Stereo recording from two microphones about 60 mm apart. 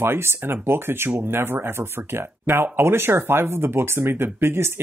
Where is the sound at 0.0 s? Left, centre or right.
Right.